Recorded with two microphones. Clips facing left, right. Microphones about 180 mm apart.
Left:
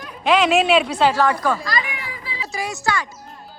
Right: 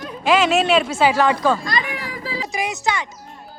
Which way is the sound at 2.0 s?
40° right (ahead or behind).